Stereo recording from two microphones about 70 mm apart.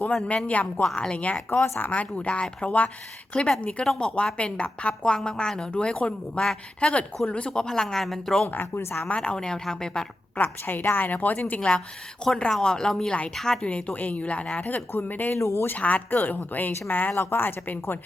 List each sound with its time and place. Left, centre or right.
0.3 s speech: centre
0.8 s a woman's voice: centre
8.4 s a woman's voice: left
9.0 s a woman's voice: centre
10.3 s speech: left
12.5 s a woman's voice: centre
13.7 s speech: centre
15.4 s a woman's voice: left
15.7 s a woman's voice: left